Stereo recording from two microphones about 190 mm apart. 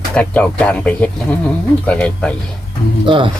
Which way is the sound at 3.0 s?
25° right (ahead or behind).